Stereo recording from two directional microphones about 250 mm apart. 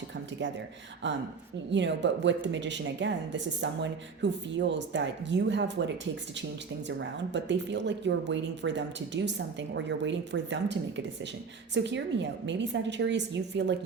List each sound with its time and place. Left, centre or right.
1.0 s speech: right
6.8 s speech: right